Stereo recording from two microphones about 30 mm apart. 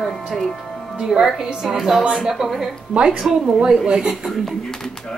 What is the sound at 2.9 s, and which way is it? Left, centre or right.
Speech, right.